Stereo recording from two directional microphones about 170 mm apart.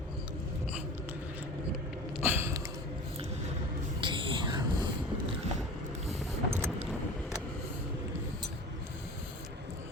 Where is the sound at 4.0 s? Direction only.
30° right (ahead or behind).